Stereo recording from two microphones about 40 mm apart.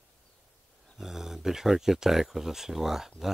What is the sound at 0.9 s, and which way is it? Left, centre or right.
Speech, centre.